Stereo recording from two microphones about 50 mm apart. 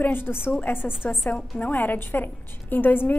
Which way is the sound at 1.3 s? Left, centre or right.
Left.